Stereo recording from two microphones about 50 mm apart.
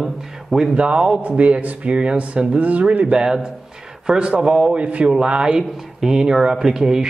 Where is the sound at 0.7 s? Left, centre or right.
Right.